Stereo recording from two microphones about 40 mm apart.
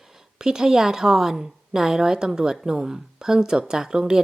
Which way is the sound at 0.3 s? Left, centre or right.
Centre.